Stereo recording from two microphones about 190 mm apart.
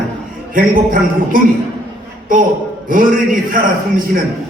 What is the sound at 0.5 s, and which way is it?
Speech, 45° right (ahead or behind).